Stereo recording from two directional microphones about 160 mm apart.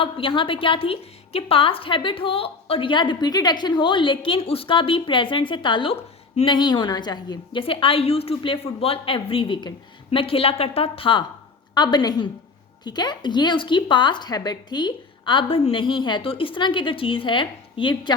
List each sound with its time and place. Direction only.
0.0 s a woman's voice: 35° left (ahead or behind)